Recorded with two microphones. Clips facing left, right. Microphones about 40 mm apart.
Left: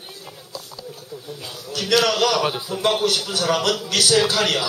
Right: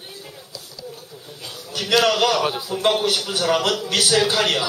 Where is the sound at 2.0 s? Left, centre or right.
Centre.